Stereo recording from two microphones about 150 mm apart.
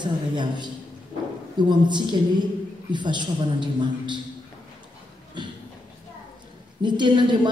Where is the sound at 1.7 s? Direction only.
30° right (ahead or behind).